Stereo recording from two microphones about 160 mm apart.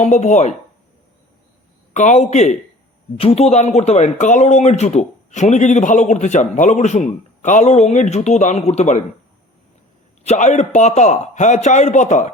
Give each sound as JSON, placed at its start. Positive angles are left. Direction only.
{"t": 0.0, "sound": "speech", "side_deg": 45}
{"t": 1.9, "sound": "speech", "side_deg": 50}
{"t": 10.2, "sound": "speech", "side_deg": 50}